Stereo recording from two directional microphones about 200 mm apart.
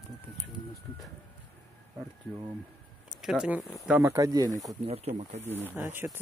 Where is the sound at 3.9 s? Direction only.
10° right (ahead or behind).